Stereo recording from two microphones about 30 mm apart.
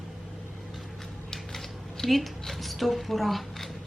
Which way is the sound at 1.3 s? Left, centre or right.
Centre.